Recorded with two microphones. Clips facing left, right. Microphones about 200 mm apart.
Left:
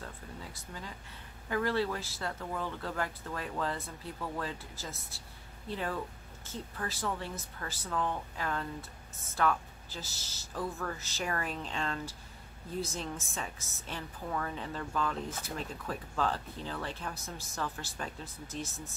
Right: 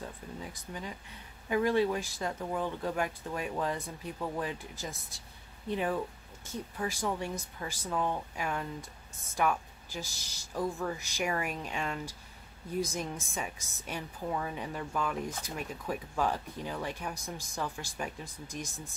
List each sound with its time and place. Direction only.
0.0 s speech: 15° right (ahead or behind)